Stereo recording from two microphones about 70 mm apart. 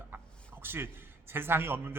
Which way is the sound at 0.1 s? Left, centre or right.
Right.